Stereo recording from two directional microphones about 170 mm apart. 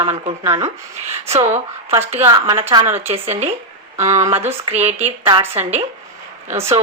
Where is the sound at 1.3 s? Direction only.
40° right (ahead or behind).